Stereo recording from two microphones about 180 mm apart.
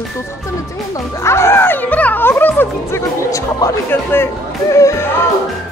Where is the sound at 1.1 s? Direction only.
15° left (ahead or behind).